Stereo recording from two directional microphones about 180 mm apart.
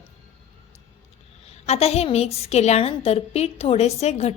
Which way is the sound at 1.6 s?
35° left (ahead or behind).